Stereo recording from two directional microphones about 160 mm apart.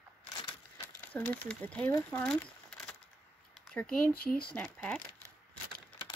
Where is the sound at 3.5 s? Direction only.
5° left (ahead or behind).